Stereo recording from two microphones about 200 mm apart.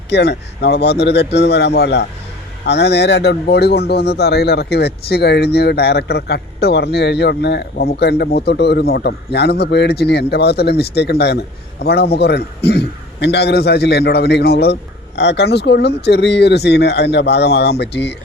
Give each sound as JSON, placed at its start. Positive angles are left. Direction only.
{"t": 0.1, "sound": "speech", "side_deg": 55}